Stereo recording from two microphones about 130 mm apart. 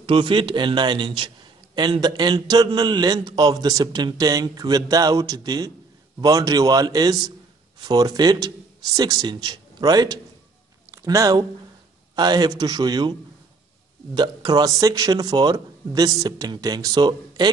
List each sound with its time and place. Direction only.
0.0 s a man's voice: 40° right (ahead or behind)
14.1 s a man's voice: 35° right (ahead or behind)